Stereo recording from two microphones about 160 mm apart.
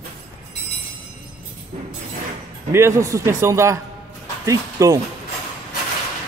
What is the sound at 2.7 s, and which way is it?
A man's voice, 20° right (ahead or behind).